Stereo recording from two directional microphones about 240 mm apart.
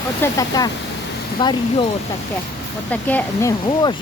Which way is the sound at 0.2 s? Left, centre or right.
Centre.